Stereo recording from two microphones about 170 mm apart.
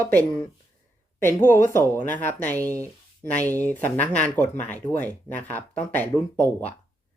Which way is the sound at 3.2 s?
10° left (ahead or behind).